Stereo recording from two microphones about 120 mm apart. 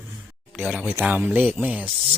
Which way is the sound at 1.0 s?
15° right (ahead or behind).